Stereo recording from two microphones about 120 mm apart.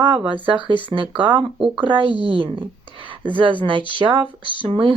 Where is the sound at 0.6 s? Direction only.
40° left (ahead or behind).